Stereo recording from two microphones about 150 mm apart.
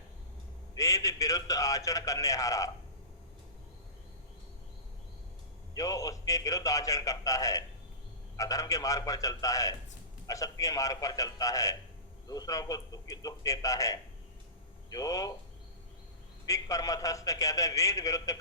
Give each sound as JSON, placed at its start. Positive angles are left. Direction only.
{"t": 0.8, "sound": "a man's voice", "side_deg": 20}
{"t": 5.7, "sound": "a man's voice", "side_deg": 25}
{"t": 16.5, "sound": "a man's voice", "side_deg": 20}